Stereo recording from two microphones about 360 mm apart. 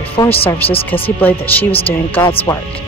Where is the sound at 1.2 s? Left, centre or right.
Centre.